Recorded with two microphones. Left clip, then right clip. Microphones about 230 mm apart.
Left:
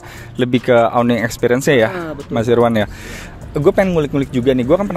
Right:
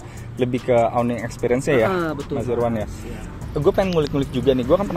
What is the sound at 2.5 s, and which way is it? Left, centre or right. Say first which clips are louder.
Speech: left 10 dB; left.